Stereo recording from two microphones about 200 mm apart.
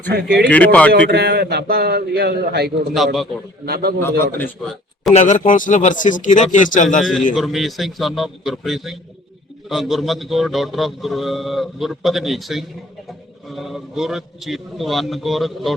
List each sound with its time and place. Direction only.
0.1 s a man's voice: 50° right (ahead or behind)
0.5 s speech: 5° left (ahead or behind)
0.9 s a man's voice: 55° right (ahead or behind)
2.9 s a man's voice: centre (ahead or behind)
3.7 s a man's voice: 50° right (ahead or behind)
4.4 s a man's voice: centre (ahead or behind)
5.1 s speech: 40° left (ahead or behind)
7.0 s a man's voice: centre (ahead or behind)